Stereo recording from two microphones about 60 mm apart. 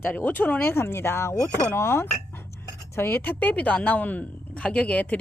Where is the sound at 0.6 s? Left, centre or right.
Left.